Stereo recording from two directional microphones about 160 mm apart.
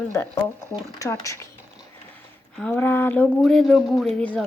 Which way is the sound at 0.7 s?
20° left (ahead or behind).